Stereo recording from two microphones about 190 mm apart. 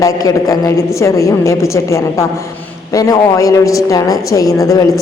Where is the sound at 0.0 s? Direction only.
15° left (ahead or behind).